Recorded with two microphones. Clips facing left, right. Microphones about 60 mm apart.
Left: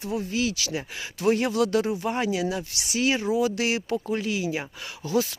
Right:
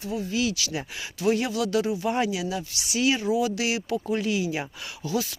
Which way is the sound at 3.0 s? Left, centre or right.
Left.